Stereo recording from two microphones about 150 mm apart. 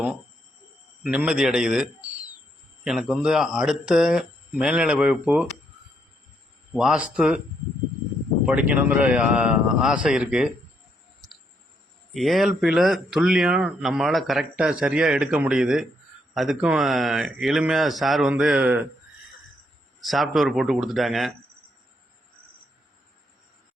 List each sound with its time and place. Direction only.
1.0 s speech: 5° right (ahead or behind)
6.7 s speech: 5° right (ahead or behind)
8.4 s speech: 10° right (ahead or behind)
12.1 s speech: centre (ahead or behind)
20.0 s speech: centre (ahead or behind)